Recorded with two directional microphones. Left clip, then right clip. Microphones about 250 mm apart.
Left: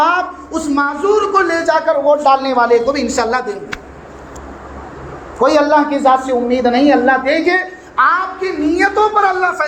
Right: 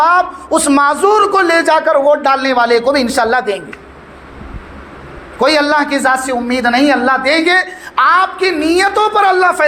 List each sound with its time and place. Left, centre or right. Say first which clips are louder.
0.0 s speech: right 3 dB; right
5.5 s speech: even; right